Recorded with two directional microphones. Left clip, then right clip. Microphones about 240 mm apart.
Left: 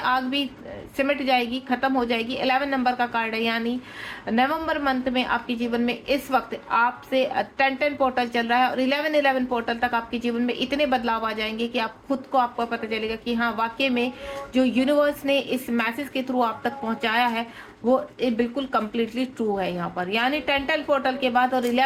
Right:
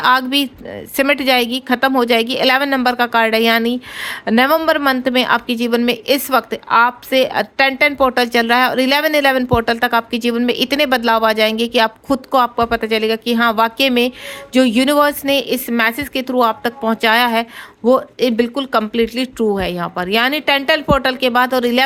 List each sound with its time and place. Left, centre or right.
0.0 s a woman's voice: right